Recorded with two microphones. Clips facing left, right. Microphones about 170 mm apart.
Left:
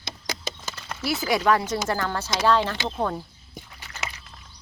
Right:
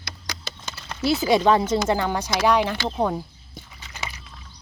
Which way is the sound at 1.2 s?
20° right (ahead or behind).